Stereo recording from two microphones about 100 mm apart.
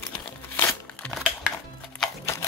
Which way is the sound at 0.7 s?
Centre (ahead or behind).